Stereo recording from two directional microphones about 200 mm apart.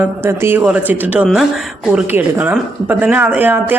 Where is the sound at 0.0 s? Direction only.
10° right (ahead or behind).